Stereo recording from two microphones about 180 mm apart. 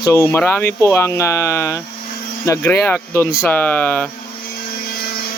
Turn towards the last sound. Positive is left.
turn(degrees=10)  # may be behind; listen again after turning